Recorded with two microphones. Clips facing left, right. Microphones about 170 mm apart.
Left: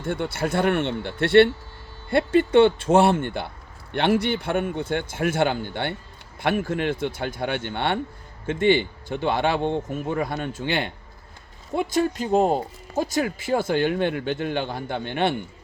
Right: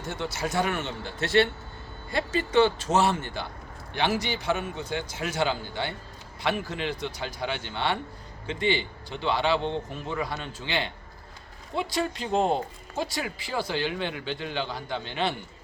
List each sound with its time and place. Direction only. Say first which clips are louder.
0.0 s a man's voice: left 6 dB; 55° left (ahead or behind)